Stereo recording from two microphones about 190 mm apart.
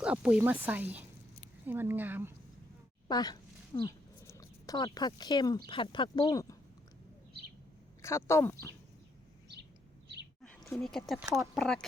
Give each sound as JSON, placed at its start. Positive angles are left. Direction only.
{"t": 0.0, "sound": "speech", "side_deg": -5}
{"t": 3.1, "sound": "speech", "side_deg": 20}
{"t": 3.8, "sound": "a sound", "side_deg": 15}
{"t": 5.6, "sound": "speech", "side_deg": 25}
{"t": 8.0, "sound": "speech", "side_deg": 15}
{"t": 10.4, "sound": "speech", "side_deg": 5}